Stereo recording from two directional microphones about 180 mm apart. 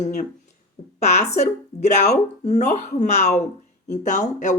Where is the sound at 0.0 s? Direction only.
45° left (ahead or behind).